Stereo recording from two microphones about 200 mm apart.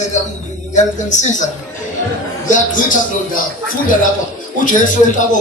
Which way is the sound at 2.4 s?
40° left (ahead or behind).